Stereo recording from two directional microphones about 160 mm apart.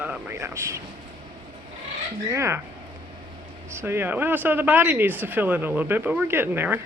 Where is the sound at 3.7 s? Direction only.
15° right (ahead or behind).